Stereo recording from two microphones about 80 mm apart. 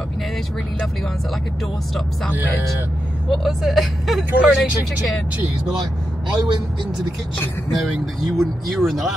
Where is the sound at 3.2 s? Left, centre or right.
Centre.